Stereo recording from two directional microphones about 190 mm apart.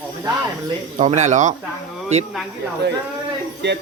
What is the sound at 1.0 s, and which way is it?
Speech, 35° right (ahead or behind).